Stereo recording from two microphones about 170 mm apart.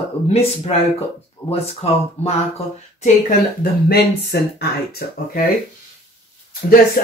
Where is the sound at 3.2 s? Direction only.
60° left (ahead or behind).